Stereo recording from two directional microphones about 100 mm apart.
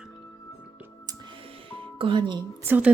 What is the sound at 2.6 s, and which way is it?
Speech, 15° right (ahead or behind).